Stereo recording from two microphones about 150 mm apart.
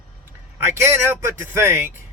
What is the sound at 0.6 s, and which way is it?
Speech, 15° right (ahead or behind).